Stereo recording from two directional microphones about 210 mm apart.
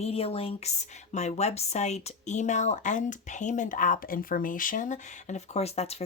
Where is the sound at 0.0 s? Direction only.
30° left (ahead or behind).